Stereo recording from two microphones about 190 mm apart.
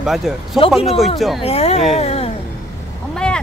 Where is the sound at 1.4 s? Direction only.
30° left (ahead or behind).